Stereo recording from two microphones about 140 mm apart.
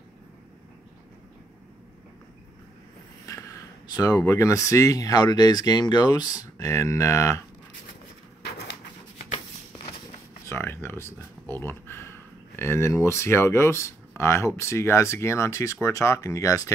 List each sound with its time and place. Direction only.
3.3 s speech: 25° left (ahead or behind)
10.4 s speech: 15° left (ahead or behind)